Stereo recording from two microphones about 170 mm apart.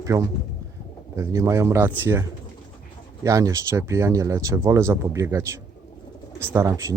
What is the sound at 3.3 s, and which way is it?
Speech, 20° right (ahead or behind).